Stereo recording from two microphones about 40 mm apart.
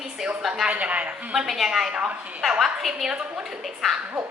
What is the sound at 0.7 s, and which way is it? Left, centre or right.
Speech, right.